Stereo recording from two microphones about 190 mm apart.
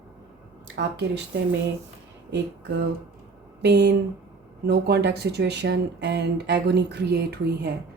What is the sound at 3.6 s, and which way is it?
A woman's voice, 60° right (ahead or behind).